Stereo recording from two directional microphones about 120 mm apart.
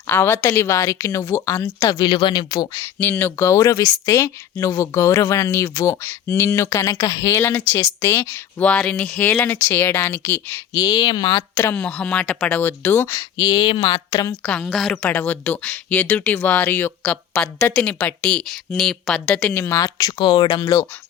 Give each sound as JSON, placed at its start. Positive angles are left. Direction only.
{"t": 0.1, "sound": "speech", "side_deg": 20}
{"t": 2.8, "sound": "speech", "side_deg": 15}
{"t": 10.8, "sound": "speech", "side_deg": 35}
{"t": 11.5, "sound": "speech", "side_deg": 20}
{"t": 13.1, "sound": "speech", "side_deg": 35}
{"t": 14.4, "sound": "speech", "side_deg": 10}
{"t": 14.7, "sound": "speech", "side_deg": 0}
{"t": 15.1, "sound": "speech", "side_deg": 15}
{"t": 19.4, "sound": "speech", "side_deg": 15}